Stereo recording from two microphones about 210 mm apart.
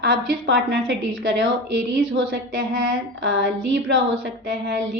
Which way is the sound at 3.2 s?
60° right (ahead or behind).